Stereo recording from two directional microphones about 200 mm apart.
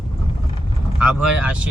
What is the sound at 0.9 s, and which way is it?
Speech, 5° right (ahead or behind).